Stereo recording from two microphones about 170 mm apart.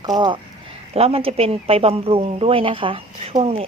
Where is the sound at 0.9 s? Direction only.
35° right (ahead or behind).